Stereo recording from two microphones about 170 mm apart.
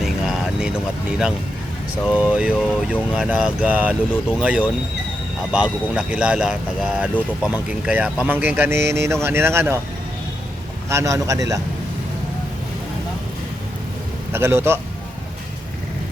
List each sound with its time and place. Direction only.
0.0 s vehicle: centre (ahead or behind)
2.1 s speech: 5° right (ahead or behind)
10.8 s a man's voice: 20° right (ahead or behind)
14.3 s speech: 15° right (ahead or behind)